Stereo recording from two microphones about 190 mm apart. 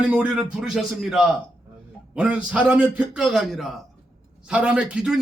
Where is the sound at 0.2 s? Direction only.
5° right (ahead or behind).